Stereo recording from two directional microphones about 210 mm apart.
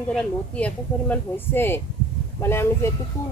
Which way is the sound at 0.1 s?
5° left (ahead or behind).